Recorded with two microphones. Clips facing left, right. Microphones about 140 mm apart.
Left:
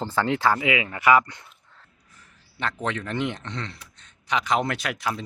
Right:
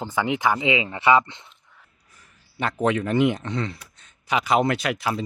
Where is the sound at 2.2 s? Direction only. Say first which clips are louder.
Right 4 dB; 10° right (ahead or behind).